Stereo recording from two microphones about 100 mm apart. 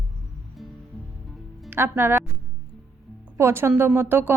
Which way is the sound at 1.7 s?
25° right (ahead or behind).